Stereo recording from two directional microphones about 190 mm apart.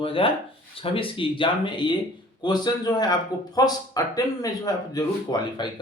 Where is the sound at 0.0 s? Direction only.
30° left (ahead or behind).